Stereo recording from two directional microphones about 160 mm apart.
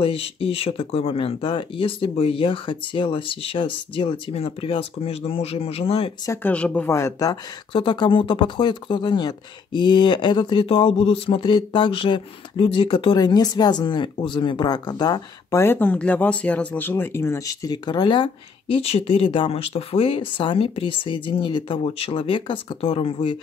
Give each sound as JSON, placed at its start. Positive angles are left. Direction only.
{"t": 0.0, "sound": "speech", "side_deg": 35}
{"t": 6.2, "sound": "speech", "side_deg": 15}
{"t": 7.7, "sound": "speech", "side_deg": 30}
{"t": 15.6, "sound": "speech", "side_deg": 10}